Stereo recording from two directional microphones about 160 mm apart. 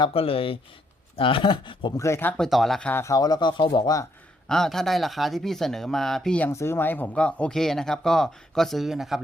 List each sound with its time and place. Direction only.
0.0 s speech: 35° left (ahead or behind)
2.0 s speech: 15° left (ahead or behind)
2.4 s speech: centre (ahead or behind); by 4.0 s 25° left (ahead or behind)
4.4 s speech: 5° left (ahead or behind)